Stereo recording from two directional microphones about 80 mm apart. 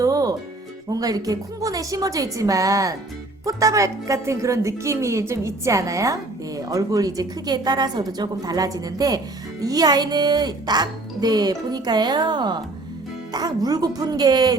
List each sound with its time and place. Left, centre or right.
0.0 s music: right
0.9 s a woman's voice: right
13.3 s speech: right